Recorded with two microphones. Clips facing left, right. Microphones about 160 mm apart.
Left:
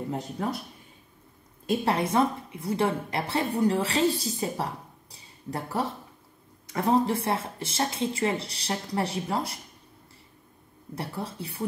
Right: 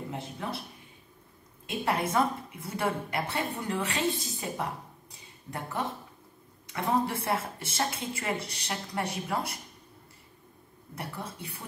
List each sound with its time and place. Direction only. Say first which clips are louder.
0.4 s speech: left 6 dB; 40° left (ahead or behind)
1.9 s a woman's voice: left 2 dB; 30° left (ahead or behind)
11.0 s a woman's voice: left 4 dB; 30° left (ahead or behind)